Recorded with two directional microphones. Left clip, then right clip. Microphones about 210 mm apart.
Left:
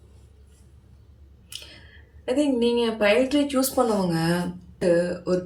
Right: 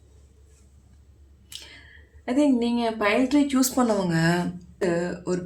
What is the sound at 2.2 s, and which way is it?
Speech, 30° right (ahead or behind).